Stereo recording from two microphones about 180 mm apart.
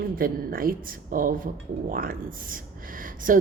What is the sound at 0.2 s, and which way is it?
A woman's voice, 55° right (ahead or behind).